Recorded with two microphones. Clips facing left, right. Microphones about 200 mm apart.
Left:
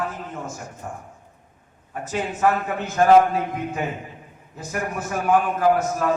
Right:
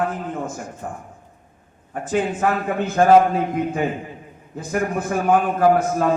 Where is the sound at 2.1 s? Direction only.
50° right (ahead or behind).